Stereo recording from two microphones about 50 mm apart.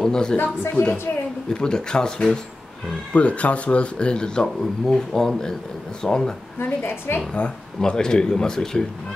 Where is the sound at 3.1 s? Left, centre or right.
Left.